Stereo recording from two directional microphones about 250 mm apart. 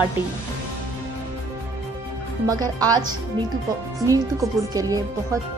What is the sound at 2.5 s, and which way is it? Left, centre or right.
Speech, centre.